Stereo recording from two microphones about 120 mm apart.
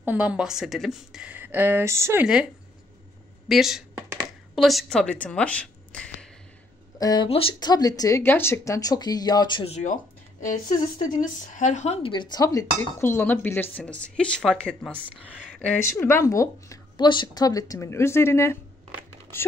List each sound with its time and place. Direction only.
0.0 s a woman's voice: 10° right (ahead or behind)
3.4 s speech: 5° right (ahead or behind)
7.0 s speech: 30° left (ahead or behind)
7.2 s speech: 50° left (ahead or behind)
7.6 s speech: 35° left (ahead or behind)
8.2 s speech: 20° left (ahead or behind); by 9.7 s 40° left (ahead or behind)
9.7 s speech: 80° left
11.0 s speech: 90° left
12.0 s speech: 40° left (ahead or behind); by 14.9 s 5° left (ahead or behind)
15.1 s speech: 5° right (ahead or behind)
15.8 s speech: 20° left (ahead or behind)
16.9 s speech: 40° left (ahead or behind); by 18.6 s 20° left (ahead or behind)